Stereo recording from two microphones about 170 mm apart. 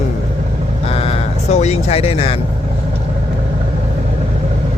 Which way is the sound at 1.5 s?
40° left (ahead or behind).